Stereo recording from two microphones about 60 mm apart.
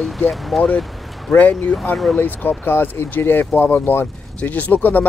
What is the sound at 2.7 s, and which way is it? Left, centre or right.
Speech, left.